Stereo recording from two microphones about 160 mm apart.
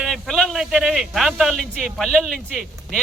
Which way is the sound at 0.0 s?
Centre (ahead or behind).